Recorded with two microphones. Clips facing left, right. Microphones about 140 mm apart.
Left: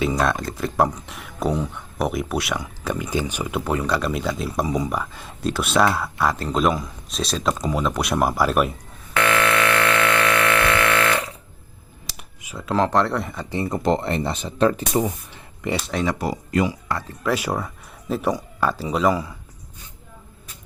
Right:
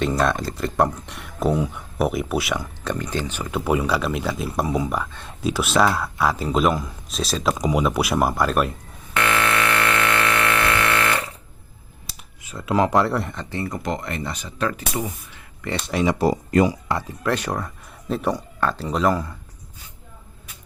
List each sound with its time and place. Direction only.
0.0 s speech: centre (ahead or behind)
3.5 s speech: 10° right (ahead or behind)
7.5 s speech: 15° right (ahead or behind)
9.1 s buzzer: 15° right (ahead or behind)
12.4 s a sound: 10° left (ahead or behind)
12.6 s speech: 10° right (ahead or behind)
13.4 s speech: 20° left (ahead or behind)
15.8 s speech: 5° right (ahead or behind)
16.1 s speech: 40° right (ahead or behind)
17.2 s speech: 5° left (ahead or behind)